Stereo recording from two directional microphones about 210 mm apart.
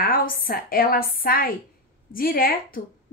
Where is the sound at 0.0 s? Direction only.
45° left (ahead or behind).